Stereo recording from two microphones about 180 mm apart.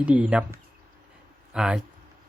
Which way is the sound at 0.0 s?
10° right (ahead or behind).